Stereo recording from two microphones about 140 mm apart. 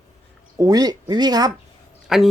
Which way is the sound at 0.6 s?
25° right (ahead or behind).